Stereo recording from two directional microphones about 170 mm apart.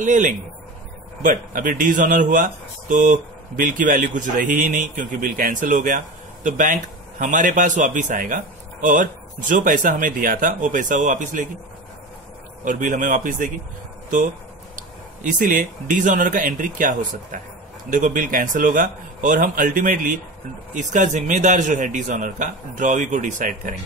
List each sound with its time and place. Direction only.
0.0 s speech: 50° right (ahead or behind)
12.6 s speech: 50° right (ahead or behind)
14.8 s speech: 50° right (ahead or behind)